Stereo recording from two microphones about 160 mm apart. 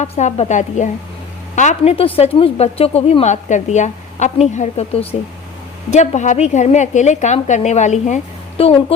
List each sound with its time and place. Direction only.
0.0 s a woman's voice: 45° left (ahead or behind)